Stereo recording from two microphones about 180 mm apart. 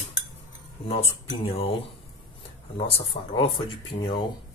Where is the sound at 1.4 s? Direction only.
30° left (ahead or behind).